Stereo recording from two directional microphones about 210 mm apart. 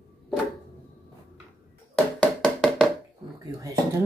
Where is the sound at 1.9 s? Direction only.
5° left (ahead or behind).